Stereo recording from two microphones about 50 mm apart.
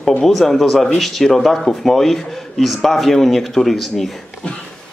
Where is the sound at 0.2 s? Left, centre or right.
Centre.